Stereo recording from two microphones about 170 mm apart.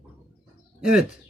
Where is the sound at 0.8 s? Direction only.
5° right (ahead or behind).